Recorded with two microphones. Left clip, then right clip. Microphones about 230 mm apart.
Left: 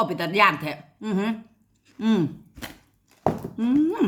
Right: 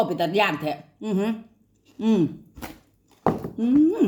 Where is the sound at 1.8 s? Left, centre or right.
Centre.